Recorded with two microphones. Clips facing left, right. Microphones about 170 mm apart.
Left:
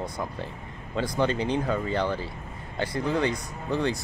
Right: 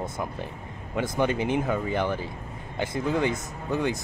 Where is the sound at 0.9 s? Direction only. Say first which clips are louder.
Even; 20° right (ahead or behind).